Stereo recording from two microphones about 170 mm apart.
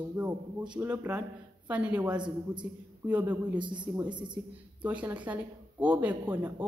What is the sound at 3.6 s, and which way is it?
Speech, 25° right (ahead or behind).